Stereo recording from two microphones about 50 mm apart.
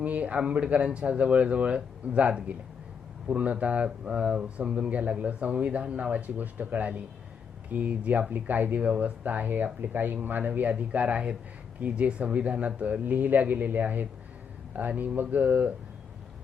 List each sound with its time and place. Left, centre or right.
0.0 s speech: right